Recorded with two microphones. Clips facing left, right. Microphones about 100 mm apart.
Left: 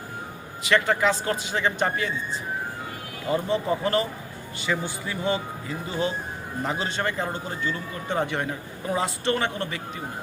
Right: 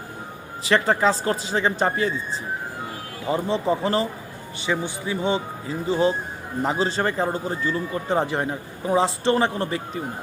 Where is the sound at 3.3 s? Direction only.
25° right (ahead or behind).